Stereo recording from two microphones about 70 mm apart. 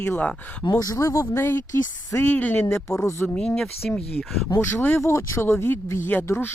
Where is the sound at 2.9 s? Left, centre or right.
Left.